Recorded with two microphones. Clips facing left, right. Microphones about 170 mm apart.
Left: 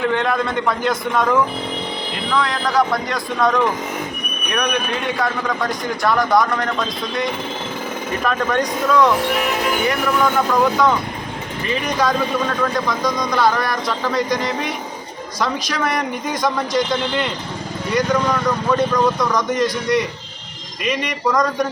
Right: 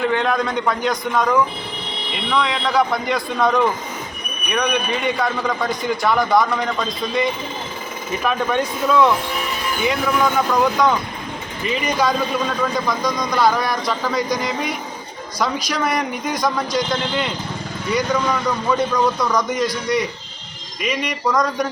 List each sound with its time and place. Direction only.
0.0 s speech: centre (ahead or behind)
2.0 s speech: 70° right (ahead or behind)
2.3 s speech: centre (ahead or behind)
9.3 s speech: 85° left
9.8 s speech: centre (ahead or behind)